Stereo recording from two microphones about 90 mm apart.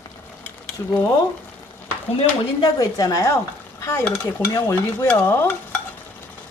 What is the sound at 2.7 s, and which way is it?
Speech, 40° left (ahead or behind).